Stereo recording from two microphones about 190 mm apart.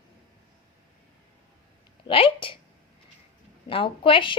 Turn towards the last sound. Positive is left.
turn(degrees=25)  # may be behind; listen again after turning